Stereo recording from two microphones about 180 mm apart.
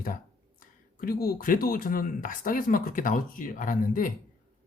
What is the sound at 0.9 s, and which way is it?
Speech, 55° left (ahead or behind).